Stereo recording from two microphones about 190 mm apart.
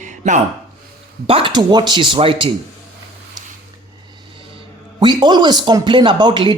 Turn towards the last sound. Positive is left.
turn(degrees=-25)  # may be behind; listen again after turning